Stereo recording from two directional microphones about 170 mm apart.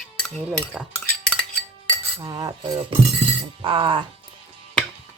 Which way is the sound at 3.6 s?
30° right (ahead or behind).